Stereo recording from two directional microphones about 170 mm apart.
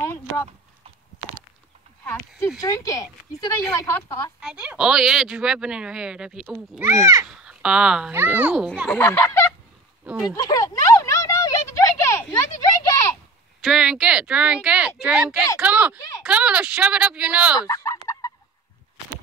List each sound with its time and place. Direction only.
0.0 s a sound: 15° left (ahead or behind)
2.6 s speech: 20° left (ahead or behind)
4.4 s speech: 5° right (ahead or behind)
7.2 s a child's voice: 5° right (ahead or behind)
8.8 s speech: 15° left (ahead or behind)
10.0 s speech: 5° right (ahead or behind)
10.3 s a sound: 20° left (ahead or behind)
13.6 s speech: centre (ahead or behind)
17.6 s fowl: 20° left (ahead or behind)